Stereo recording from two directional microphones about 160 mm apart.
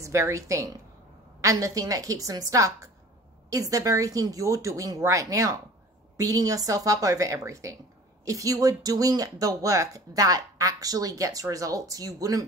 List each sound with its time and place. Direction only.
0.0 s speech: 20° right (ahead or behind)